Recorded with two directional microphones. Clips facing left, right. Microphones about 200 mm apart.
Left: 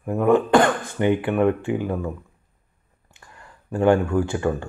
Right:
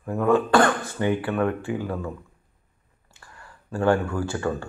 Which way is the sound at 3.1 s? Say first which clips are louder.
Left 1 dB; 20° left (ahead or behind).